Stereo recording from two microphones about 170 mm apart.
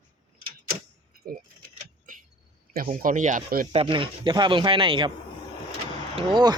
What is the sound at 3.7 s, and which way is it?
Speech, 30° right (ahead or behind).